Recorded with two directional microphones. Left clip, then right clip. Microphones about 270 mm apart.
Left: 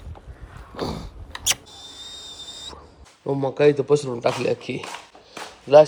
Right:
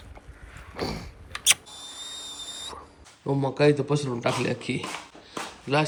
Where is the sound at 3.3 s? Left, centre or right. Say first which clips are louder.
Left 4 dB; centre.